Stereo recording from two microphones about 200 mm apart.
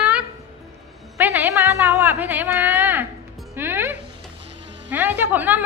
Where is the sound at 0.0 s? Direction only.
5° right (ahead or behind).